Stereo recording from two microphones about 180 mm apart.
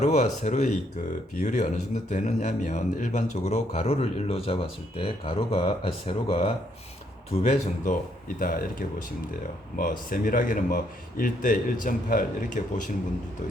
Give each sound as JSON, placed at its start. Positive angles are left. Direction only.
{"t": 0.0, "sound": "speech", "side_deg": 40}
{"t": 9.7, "sound": "speech", "side_deg": 50}